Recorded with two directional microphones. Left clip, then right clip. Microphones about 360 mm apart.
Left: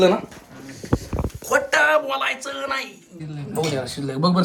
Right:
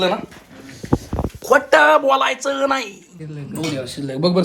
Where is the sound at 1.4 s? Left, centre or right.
Centre.